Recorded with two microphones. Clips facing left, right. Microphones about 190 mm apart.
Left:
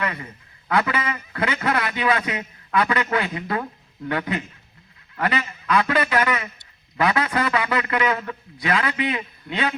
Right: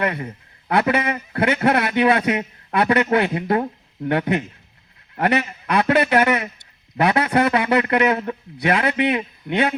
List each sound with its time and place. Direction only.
0.0 s a man's voice: 55° right (ahead or behind)
5.2 s a man's voice: 65° right (ahead or behind)
8.1 s a man's voice: 25° right (ahead or behind)
8.6 s a man's voice: 60° right (ahead or behind)